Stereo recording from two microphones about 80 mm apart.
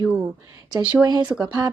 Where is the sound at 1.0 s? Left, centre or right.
Right.